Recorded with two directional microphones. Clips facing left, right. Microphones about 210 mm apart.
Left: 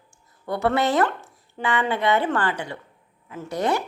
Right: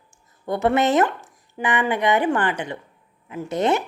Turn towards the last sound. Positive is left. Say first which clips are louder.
# right 3 dB
turn(degrees=-20)  # may be behind; listen again after turning